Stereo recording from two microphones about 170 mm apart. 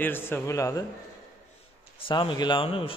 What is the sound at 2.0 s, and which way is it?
Speech, 30° left (ahead or behind).